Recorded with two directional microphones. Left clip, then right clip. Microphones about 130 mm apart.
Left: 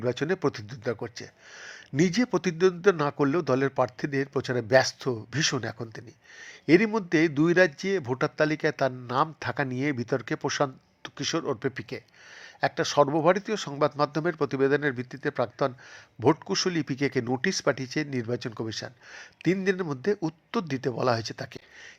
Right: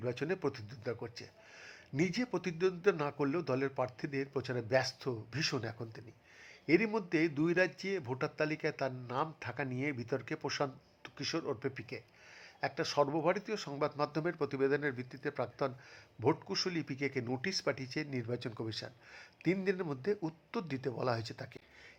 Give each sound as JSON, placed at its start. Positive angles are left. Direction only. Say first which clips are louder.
{"t": 0.0, "sound": "speech", "louder": "left 9 dB", "side_deg": 25}